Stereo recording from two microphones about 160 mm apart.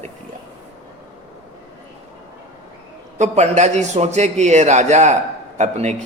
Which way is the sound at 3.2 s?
45° right (ahead or behind).